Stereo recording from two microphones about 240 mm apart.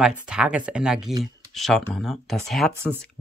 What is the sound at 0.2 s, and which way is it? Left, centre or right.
Speech, centre.